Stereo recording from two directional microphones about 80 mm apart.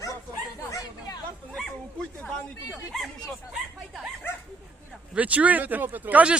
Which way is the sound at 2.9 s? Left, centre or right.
Centre.